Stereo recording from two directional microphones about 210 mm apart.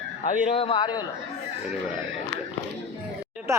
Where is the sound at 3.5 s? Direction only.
15° right (ahead or behind).